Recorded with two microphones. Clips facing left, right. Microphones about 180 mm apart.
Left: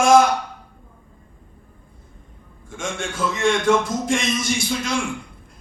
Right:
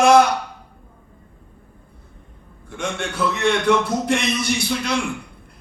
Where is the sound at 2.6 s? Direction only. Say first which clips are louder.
Right 2 dB; 65° right (ahead or behind).